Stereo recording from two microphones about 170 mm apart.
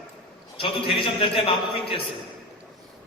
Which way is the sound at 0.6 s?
30° left (ahead or behind).